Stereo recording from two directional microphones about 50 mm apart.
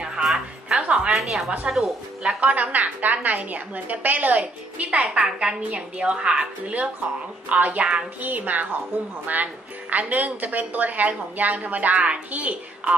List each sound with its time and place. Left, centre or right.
0.0 s music: centre
1.1 s a woman's voice: centre
2.4 s a woman's voice: right
7.4 s a woman's voice: right